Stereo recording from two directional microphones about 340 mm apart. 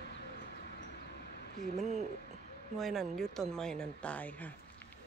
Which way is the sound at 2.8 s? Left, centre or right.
Centre.